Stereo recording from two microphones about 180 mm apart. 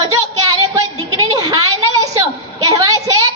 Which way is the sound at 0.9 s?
20° right (ahead or behind).